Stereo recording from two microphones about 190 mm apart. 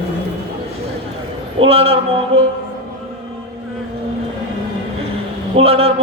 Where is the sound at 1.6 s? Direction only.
30° right (ahead or behind).